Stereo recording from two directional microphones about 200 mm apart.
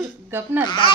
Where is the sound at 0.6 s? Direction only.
20° left (ahead or behind).